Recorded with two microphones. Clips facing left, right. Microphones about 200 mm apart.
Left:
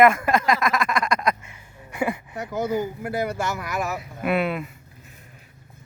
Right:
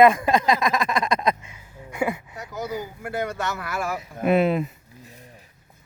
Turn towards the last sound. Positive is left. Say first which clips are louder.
# right 4 dB
turn(degrees=-35)  # may be behind; listen again after turning